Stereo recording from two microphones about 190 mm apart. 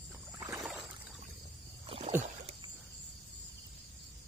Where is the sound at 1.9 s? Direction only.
35° right (ahead or behind).